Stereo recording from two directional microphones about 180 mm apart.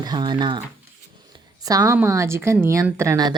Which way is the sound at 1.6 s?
20° right (ahead or behind).